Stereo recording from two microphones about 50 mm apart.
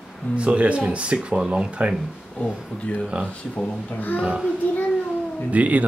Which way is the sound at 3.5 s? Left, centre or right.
Left.